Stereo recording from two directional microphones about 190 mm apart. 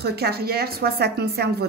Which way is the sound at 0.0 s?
55° right (ahead or behind).